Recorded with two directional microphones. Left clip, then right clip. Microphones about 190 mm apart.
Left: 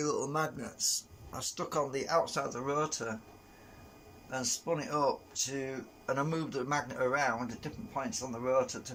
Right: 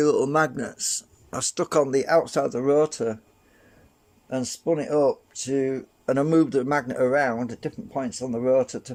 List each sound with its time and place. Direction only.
0.0 s speech: 50° right (ahead or behind)
4.3 s speech: 45° right (ahead or behind)